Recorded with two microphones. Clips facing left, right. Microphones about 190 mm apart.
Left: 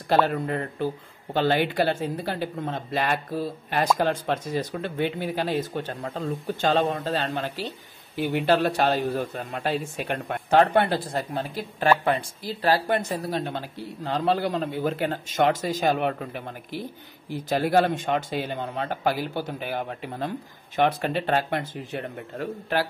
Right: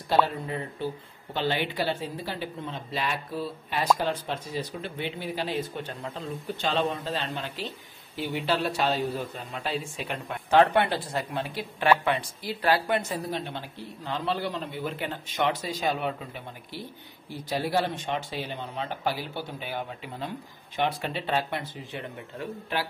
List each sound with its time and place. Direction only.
0.1 s speech: 60° left (ahead or behind); by 7.6 s 40° left (ahead or behind)
8.2 s speech: 55° left (ahead or behind)
17.5 s speech: 55° left (ahead or behind)